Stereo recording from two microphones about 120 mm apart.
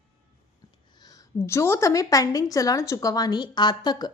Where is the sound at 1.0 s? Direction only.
30° left (ahead or behind).